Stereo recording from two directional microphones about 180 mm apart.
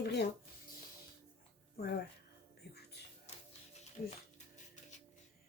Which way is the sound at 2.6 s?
60° left (ahead or behind).